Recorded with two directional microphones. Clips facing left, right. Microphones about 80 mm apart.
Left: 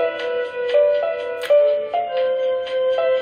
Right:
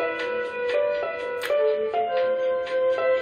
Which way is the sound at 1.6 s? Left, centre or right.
Right.